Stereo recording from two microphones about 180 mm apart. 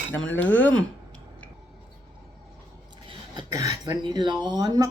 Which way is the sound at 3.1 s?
20° right (ahead or behind).